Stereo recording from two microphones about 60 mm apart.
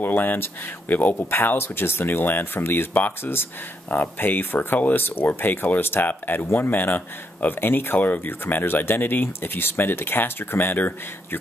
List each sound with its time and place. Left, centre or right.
0.0 s speech: left